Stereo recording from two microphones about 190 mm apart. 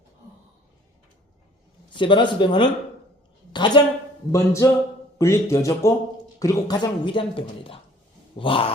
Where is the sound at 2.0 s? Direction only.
25° left (ahead or behind).